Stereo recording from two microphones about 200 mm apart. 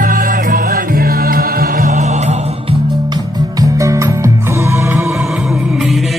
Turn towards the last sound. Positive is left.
turn(degrees=0)  # may be behind; listen again after turning